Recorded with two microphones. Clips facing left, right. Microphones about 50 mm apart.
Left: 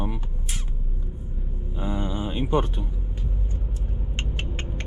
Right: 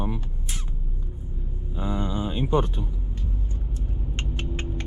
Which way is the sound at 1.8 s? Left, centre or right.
Left.